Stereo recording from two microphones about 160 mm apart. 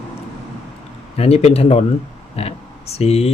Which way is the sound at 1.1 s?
40° left (ahead or behind).